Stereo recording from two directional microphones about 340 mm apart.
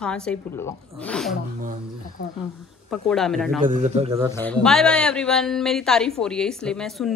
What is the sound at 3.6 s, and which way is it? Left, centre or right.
Speech, centre.